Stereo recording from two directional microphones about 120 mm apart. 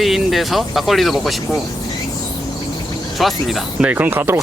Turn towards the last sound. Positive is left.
turn(degrees=-20)  # may be behind; listen again after turning